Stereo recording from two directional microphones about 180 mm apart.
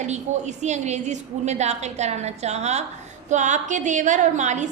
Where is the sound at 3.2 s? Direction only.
40° right (ahead or behind).